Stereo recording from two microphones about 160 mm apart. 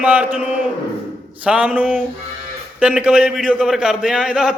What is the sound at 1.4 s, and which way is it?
A man's voice, 10° right (ahead or behind).